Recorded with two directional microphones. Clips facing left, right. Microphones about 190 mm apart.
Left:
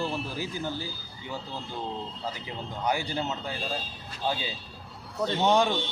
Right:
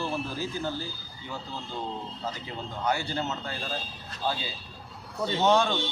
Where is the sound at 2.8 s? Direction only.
15° left (ahead or behind).